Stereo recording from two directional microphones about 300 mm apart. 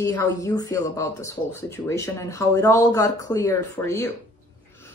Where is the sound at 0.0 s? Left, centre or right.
Centre.